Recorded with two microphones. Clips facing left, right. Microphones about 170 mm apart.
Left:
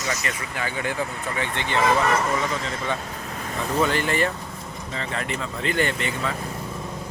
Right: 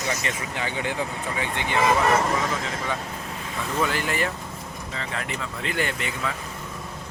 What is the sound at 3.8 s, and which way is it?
Speech, 5° right (ahead or behind).